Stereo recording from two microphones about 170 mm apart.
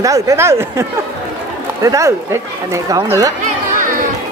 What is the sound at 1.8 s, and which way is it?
Speech, 20° right (ahead or behind).